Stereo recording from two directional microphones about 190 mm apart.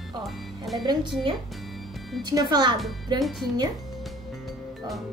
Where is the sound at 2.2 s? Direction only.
20° right (ahead or behind).